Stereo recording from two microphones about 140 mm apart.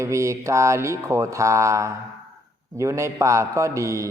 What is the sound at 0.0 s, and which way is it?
A man's voice, 20° right (ahead or behind).